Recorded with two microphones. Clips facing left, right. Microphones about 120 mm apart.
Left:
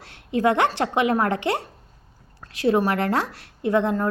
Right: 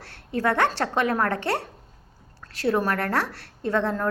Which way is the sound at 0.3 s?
15° left (ahead or behind).